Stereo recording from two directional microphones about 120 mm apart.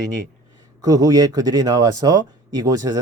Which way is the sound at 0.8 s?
30° right (ahead or behind).